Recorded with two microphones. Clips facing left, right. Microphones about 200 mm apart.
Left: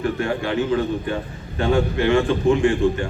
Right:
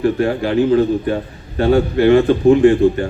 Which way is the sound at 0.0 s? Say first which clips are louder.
Right 6 dB; 35° right (ahead or behind).